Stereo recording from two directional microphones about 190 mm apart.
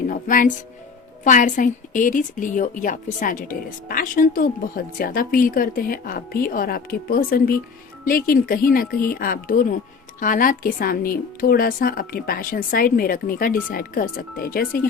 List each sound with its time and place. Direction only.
0.1 s a woman's voice: 45° left (ahead or behind)